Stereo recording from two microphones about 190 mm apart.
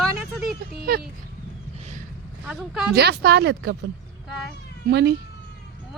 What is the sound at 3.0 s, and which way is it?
Speech, 60° right (ahead or behind).